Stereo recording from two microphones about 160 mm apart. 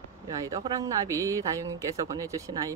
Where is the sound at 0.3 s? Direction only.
20° right (ahead or behind).